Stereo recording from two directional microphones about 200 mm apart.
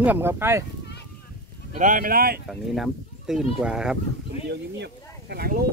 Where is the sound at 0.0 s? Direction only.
10° right (ahead or behind).